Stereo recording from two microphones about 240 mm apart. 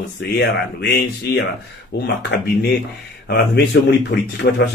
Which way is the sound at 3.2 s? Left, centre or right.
Left.